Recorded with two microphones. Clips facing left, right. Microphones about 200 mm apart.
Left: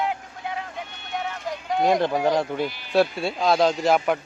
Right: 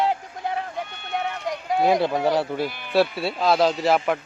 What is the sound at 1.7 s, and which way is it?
Speech, 5° right (ahead or behind).